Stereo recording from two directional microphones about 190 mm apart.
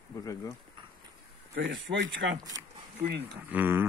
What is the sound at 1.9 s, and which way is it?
Speech, 70° right (ahead or behind).